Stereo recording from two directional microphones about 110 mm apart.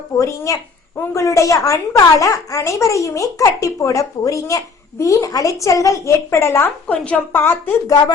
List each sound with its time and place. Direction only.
0.2 s a woman's voice: 30° left (ahead or behind)
6.8 s a woman's voice: 10° left (ahead or behind)
7.9 s a woman's voice: 35° left (ahead or behind)